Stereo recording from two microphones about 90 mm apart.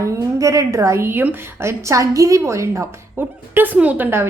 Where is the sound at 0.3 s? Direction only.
35° right (ahead or behind).